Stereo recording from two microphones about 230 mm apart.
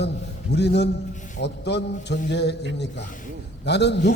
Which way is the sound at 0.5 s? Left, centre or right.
Left.